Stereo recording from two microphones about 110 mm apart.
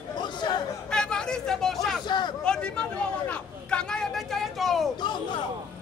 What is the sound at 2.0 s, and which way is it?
Speech, 40° left (ahead or behind).